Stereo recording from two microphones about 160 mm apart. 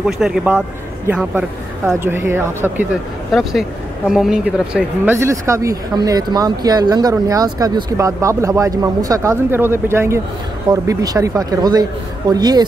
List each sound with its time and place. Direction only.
0.0 s a man's voice: 5° right (ahead or behind)
4.1 s a man's voice: 5° right (ahead or behind)
5.1 s speech: 20° right (ahead or behind)